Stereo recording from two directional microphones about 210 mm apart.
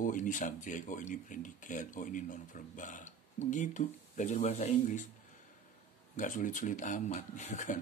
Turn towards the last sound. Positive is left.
turn(degrees=35)  # may be behind; listen again after turning